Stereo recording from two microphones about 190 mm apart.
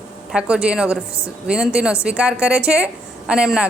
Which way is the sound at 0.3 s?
5° right (ahead or behind).